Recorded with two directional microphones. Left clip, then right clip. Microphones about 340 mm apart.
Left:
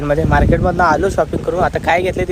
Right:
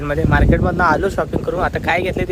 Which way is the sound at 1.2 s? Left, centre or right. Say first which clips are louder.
Left 3 dB; left.